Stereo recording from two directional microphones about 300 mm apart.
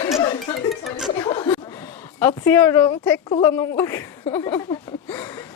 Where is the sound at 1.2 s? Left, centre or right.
Centre.